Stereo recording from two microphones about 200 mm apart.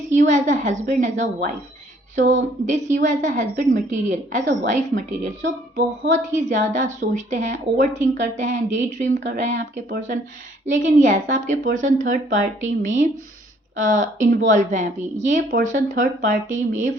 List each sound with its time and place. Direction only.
0.2 s a woman's voice: 35° right (ahead or behind)
13.7 s a woman's voice: 40° right (ahead or behind)